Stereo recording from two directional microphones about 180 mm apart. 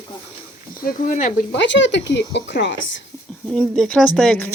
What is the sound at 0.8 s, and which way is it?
Speech, 45° left (ahead or behind).